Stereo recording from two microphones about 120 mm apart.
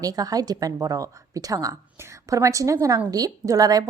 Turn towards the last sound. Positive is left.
turn(degrees=-30)  # may be behind; listen again after turning